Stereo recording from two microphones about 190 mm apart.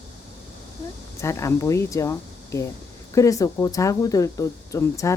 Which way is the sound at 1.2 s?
15° left (ahead or behind).